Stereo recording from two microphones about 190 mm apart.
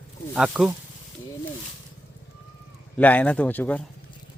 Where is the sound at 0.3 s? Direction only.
5° right (ahead or behind).